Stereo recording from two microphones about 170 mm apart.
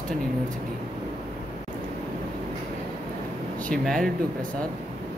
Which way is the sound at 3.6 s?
5° left (ahead or behind).